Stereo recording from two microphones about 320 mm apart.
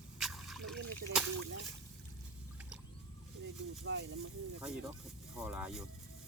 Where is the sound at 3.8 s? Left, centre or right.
Right.